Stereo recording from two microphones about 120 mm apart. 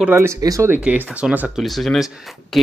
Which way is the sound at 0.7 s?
10° right (ahead or behind).